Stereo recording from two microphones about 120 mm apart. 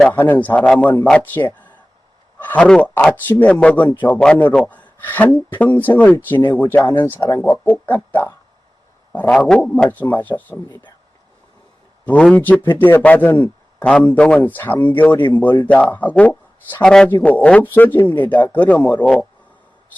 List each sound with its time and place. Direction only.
0.1 s a man's voice: 15° left (ahead or behind)
12.0 s a man's voice: 10° left (ahead or behind)
17.1 s a man's voice: 15° left (ahead or behind)